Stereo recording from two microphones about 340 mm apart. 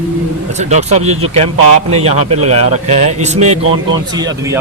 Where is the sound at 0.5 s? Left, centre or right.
Centre.